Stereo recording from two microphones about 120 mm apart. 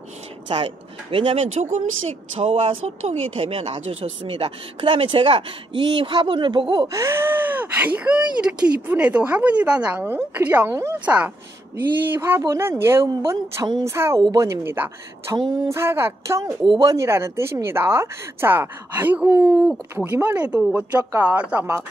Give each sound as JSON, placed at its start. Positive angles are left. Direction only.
{"t": 0.5, "sound": "speech", "side_deg": -50}
{"t": 2.3, "sound": "speech", "side_deg": -50}
{"t": 6.9, "sound": "speech", "side_deg": -20}